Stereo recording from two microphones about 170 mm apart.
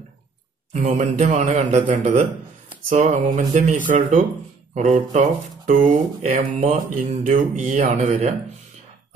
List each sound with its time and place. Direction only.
0.7 s speech: 45° right (ahead or behind)